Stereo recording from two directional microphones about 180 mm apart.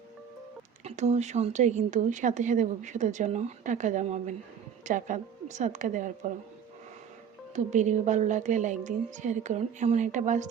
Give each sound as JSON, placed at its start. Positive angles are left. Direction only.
{"t": 0.9, "sound": "a woman's voice", "side_deg": -40}
{"t": 7.5, "sound": "a woman's voice", "side_deg": -40}